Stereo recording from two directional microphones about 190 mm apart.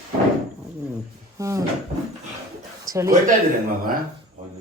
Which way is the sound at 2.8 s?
20° right (ahead or behind).